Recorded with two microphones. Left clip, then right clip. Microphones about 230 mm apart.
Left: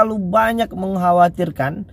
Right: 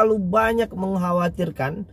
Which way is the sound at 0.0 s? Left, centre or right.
Left.